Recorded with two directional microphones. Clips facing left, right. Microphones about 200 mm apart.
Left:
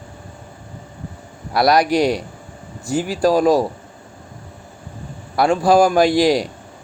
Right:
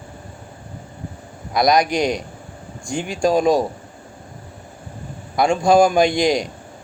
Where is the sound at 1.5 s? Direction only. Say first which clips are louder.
Left 1 dB; 15° right (ahead or behind).